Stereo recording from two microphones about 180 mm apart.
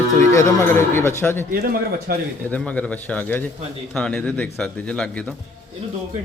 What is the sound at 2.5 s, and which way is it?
Speech, 5° left (ahead or behind).